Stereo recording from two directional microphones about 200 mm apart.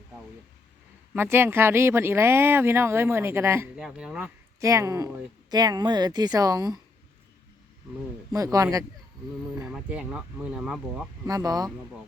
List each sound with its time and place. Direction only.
1.1 s speech: 10° right (ahead or behind)
4.6 s speech: 15° right (ahead or behind)
8.3 s speech: 15° right (ahead or behind)
9.6 s speech: 5° right (ahead or behind)
11.3 s speech: 20° right (ahead or behind)